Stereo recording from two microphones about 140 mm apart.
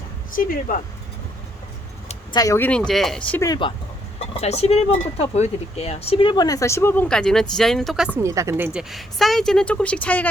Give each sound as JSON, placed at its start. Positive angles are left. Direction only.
{"t": 0.3, "sound": "speech", "side_deg": 80}
{"t": 2.3, "sound": "speech", "side_deg": 25}
{"t": 2.6, "sound": "speech", "side_deg": 10}
{"t": 3.6, "sound": "speech", "side_deg": 35}
{"t": 4.4, "sound": "speech", "side_deg": 50}
{"t": 8.2, "sound": "a woman's voice", "side_deg": -20}
{"t": 8.8, "sound": "speech", "side_deg": 0}